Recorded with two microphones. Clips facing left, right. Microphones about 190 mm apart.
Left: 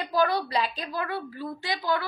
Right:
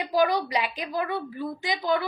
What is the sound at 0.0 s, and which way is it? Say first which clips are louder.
A woman's voice: right 2 dB; 15° right (ahead or behind).